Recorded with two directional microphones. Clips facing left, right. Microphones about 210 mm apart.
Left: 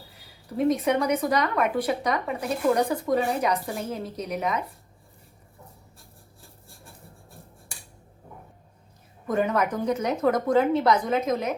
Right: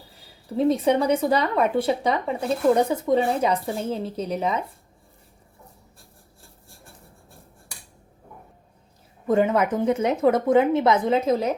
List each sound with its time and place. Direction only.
0.5 s speech: 30° right (ahead or behind)
9.2 s speech: 25° right (ahead or behind)